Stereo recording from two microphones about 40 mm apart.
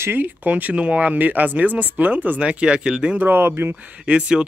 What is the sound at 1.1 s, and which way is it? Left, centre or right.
Speech, right.